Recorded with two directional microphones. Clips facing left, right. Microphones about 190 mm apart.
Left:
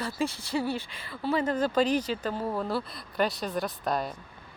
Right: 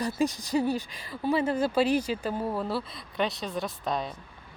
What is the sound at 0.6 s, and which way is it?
Speech, 35° right (ahead or behind).